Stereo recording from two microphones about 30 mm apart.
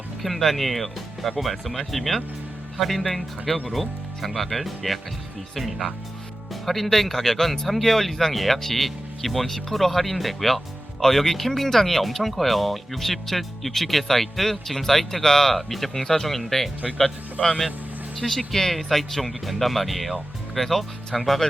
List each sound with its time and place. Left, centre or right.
0.2 s speech: centre
17.4 s speech: left
18.2 s speech: centre